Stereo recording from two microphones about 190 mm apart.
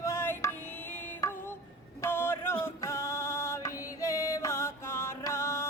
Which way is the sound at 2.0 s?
10° left (ahead or behind).